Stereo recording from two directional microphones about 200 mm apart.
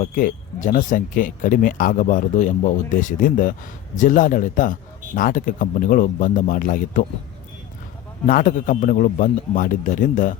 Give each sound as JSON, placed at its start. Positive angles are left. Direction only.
{"t": 0.0, "sound": "speech", "side_deg": 45}
{"t": 8.3, "sound": "speech", "side_deg": 40}